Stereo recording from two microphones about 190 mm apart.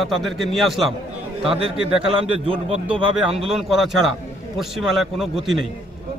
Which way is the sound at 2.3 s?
30° right (ahead or behind).